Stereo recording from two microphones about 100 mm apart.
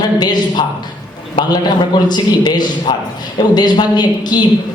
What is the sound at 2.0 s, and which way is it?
A man's voice, 45° left (ahead or behind).